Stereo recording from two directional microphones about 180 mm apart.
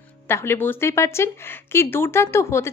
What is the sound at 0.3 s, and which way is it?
A woman's voice, 15° left (ahead or behind).